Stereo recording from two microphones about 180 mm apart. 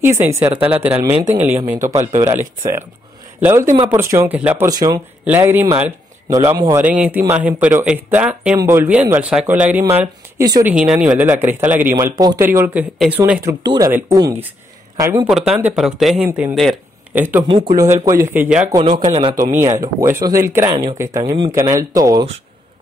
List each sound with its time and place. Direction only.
0.0 s speech: 15° right (ahead or behind)
4.6 s speech: 20° right (ahead or behind)
10.7 s speech: 5° right (ahead or behind); by 12.4 s 20° right (ahead or behind)
12.4 s speech: 10° right (ahead or behind)
15.5 s speech: 5° right (ahead or behind)
16.5 s a sound: centre (ahead or behind)
17.2 s speech: 10° right (ahead or behind)
18.9 s speech: 40° right (ahead or behind)
19.5 s speech: 20° right (ahead or behind)